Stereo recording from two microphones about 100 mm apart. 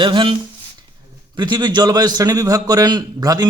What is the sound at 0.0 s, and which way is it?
Speech, 55° right (ahead or behind).